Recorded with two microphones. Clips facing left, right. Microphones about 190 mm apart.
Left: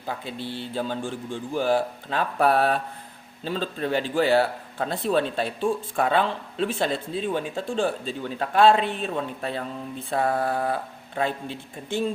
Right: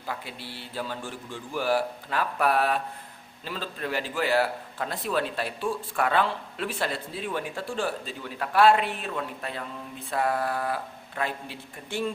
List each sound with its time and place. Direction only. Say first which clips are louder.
0.1 s a man's voice: left 5 dB; 25° left (ahead or behind)